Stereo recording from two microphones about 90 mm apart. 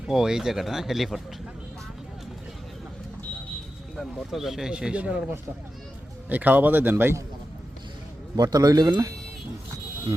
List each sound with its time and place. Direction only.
0.0 s speech: 5° right (ahead or behind)
3.9 s speech: centre (ahead or behind)
6.2 s speech: 20° right (ahead or behind)
8.4 s speech: 45° right (ahead or behind)